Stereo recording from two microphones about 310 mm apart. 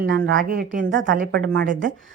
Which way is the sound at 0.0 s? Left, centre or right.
Right.